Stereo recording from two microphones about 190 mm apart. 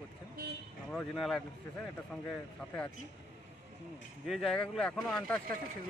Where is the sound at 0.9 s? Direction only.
Centre (ahead or behind).